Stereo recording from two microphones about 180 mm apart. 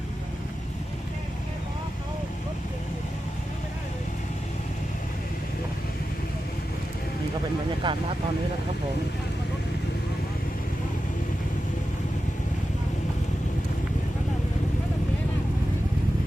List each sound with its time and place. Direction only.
7.8 s speech: 25° right (ahead or behind)